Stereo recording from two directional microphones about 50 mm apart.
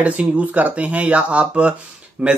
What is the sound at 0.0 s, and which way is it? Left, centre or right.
Speech, right.